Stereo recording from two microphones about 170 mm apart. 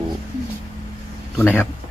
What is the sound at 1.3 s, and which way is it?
Speech, 10° left (ahead or behind).